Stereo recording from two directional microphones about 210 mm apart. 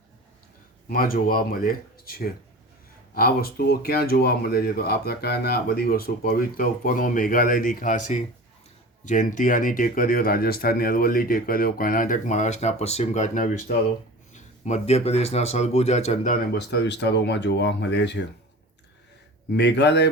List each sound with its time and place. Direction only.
0.9 s speech: 45° left (ahead or behind)
16.6 s speech: 55° left (ahead or behind)
19.5 s speech: 55° left (ahead or behind)